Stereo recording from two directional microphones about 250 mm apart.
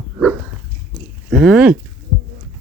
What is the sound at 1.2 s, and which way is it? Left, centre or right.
Speech, centre.